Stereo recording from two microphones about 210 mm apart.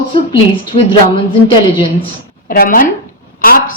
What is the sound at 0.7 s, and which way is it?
Speech, 25° left (ahead or behind).